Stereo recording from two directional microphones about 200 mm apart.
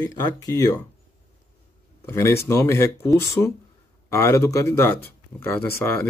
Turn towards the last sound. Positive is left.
turn(degrees=10)  # may be behind; listen again after turning